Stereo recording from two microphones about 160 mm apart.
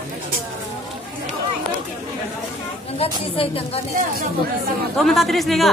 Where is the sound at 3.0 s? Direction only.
35° left (ahead or behind).